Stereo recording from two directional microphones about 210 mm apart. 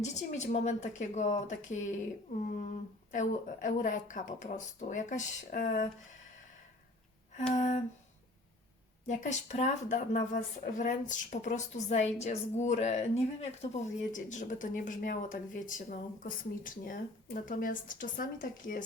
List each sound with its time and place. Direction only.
0.0 s a woman's voice: 35° left (ahead or behind)
3.1 s a woman's voice: 40° left (ahead or behind)
7.5 s a woman's voice: 35° left (ahead or behind)
9.0 s a woman's voice: 35° left (ahead or behind)